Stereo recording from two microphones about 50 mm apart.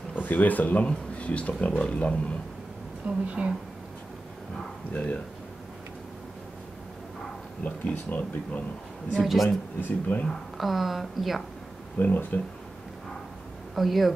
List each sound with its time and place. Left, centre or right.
0.1 s speech: left
3.1 s a woman's voice: right
7.6 s speech: left
9.2 s a woman's voice: centre
10.0 s speech: left
10.6 s a woman's voice: centre
12.0 s speech: left
13.7 s a woman's voice: centre